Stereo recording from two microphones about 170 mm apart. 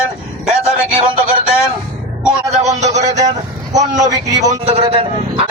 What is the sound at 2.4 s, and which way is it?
Speech, 40° right (ahead or behind).